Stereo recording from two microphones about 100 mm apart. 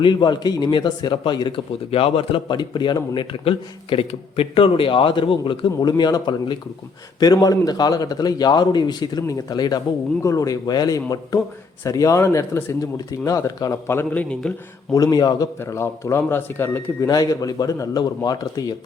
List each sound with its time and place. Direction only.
0.0 s speech: 50° left (ahead or behind)
1.9 s a man's voice: 70° left (ahead or behind)
2.6 s a man's voice: 45° left (ahead or behind)
13.8 s a man's voice: 25° left (ahead or behind)
14.9 s a man's voice: 35° left (ahead or behind)
15.6 s a man's voice: 30° left (ahead or behind)